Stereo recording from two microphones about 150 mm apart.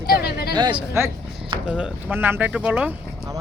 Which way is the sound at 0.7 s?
15° right (ahead or behind).